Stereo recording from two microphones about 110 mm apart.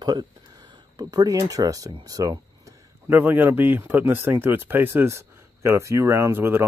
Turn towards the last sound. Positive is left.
turn(degrees=-20)  # may be behind; listen again after turning